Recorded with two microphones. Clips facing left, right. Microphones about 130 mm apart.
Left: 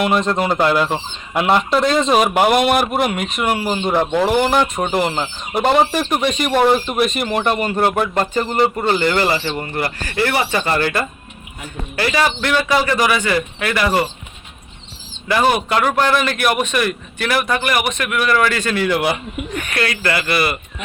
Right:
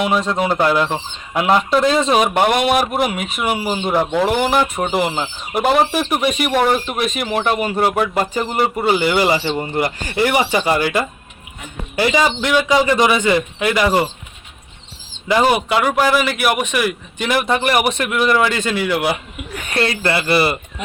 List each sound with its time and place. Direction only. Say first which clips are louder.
0.0 s speech: left 1 dB; centre (ahead or behind)
15.3 s speech: right 1 dB; 15° right (ahead or behind)
19.6 s speech: right 4 dB; 25° right (ahead or behind)